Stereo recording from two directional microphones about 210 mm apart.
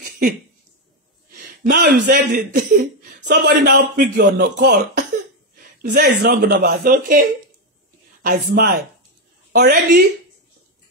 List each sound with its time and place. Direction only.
1.3 s speech: 40° right (ahead or behind)
8.2 s speech: 45° right (ahead or behind)